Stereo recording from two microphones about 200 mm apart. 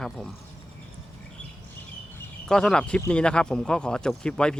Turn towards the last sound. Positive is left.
turn(degrees=5)  # may be behind; listen again after turning